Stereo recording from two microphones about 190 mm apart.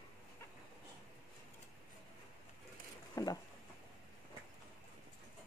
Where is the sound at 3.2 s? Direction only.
20° left (ahead or behind).